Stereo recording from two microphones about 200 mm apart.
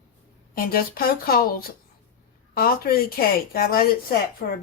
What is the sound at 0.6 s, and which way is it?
Speech, 50° left (ahead or behind).